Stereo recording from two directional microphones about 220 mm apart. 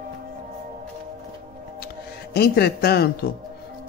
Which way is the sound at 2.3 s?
45° left (ahead or behind).